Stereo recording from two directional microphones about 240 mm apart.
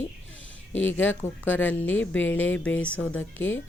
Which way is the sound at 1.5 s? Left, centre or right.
Centre.